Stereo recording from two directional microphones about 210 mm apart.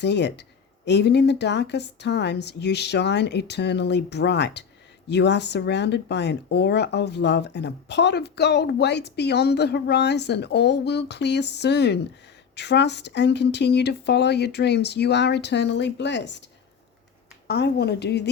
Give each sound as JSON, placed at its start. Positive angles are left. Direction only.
{"t": 0.0, "sound": "speech", "side_deg": 55}
{"t": 17.5, "sound": "speech", "side_deg": 50}